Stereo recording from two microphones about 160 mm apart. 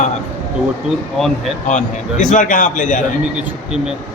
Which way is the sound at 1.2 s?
Centre (ahead or behind).